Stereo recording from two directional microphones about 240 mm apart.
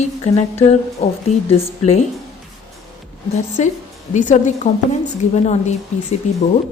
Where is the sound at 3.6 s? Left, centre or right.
Left.